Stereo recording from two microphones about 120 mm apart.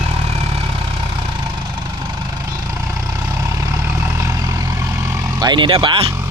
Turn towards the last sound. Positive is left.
turn(degrees=-45)  # may be behind; listen again after turning